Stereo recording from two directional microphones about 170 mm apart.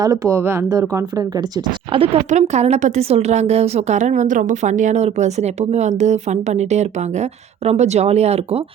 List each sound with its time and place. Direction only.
0.0 s speech: 20° right (ahead or behind)
1.9 s a woman's voice: 35° right (ahead or behind)